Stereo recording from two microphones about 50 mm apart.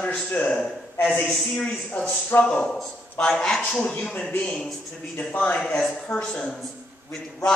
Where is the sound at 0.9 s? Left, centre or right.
Left.